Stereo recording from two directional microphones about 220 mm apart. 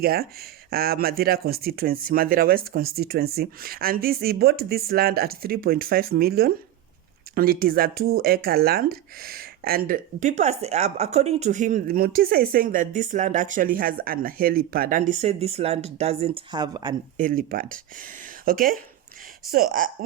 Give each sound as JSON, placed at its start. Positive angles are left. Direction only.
{"t": 0.0, "sound": "speech", "side_deg": -45}
{"t": 17.2, "sound": "speech", "side_deg": -40}